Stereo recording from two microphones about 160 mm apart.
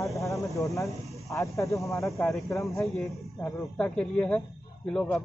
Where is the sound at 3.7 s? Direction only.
5° left (ahead or behind).